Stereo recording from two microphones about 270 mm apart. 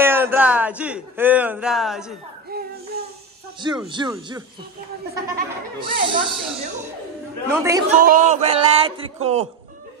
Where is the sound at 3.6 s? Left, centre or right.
Centre.